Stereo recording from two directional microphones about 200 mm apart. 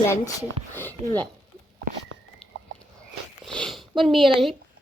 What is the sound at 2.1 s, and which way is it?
Chicken, 90° right.